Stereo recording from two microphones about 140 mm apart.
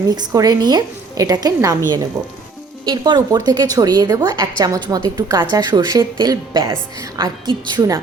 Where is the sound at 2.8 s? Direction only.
30° right (ahead or behind).